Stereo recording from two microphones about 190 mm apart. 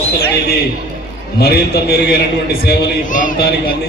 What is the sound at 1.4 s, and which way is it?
A man's voice, 55° left (ahead or behind).